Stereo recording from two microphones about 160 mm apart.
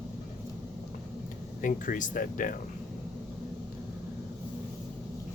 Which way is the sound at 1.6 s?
55° left (ahead or behind).